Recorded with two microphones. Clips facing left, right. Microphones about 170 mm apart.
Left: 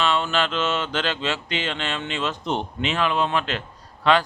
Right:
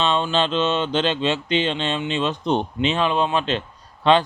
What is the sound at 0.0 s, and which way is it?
Mantra, 20° right (ahead or behind).